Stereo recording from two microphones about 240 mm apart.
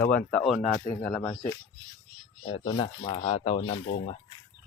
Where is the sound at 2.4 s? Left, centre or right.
Left.